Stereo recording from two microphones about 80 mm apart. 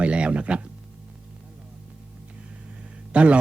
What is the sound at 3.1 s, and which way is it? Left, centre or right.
Speech, centre.